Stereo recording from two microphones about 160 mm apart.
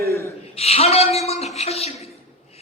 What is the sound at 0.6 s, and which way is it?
A man's voice, 40° left (ahead or behind).